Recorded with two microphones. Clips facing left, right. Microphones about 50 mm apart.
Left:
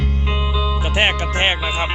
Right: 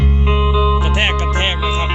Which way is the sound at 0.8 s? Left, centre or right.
Centre.